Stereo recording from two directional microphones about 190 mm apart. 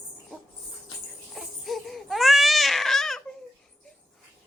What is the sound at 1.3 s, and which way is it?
Crying, centre (ahead or behind).